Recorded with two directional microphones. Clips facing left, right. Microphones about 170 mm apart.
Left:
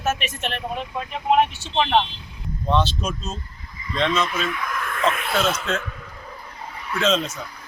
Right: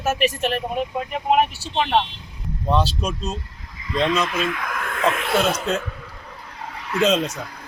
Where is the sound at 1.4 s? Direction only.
10° right (ahead or behind).